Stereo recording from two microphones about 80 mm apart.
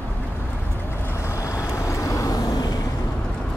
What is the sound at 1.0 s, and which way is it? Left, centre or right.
Vehicle, left.